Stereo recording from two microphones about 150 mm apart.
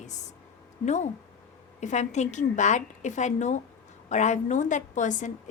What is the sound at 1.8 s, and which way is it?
A woman's voice, 50° left (ahead or behind).